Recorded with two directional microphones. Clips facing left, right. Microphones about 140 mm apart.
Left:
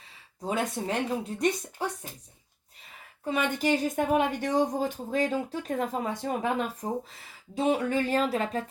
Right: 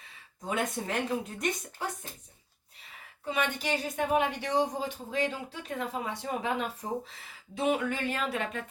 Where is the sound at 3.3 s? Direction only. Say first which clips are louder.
Left 4 dB; 45° left (ahead or behind).